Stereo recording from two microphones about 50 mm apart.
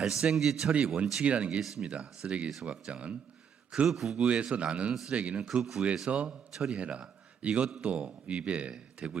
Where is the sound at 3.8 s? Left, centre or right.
Centre.